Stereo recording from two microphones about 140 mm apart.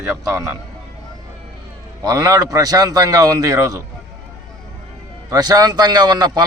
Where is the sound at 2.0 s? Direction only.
30° right (ahead or behind).